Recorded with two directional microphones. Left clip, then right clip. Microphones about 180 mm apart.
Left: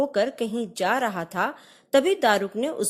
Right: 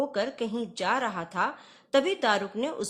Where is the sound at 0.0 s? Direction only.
30° left (ahead or behind).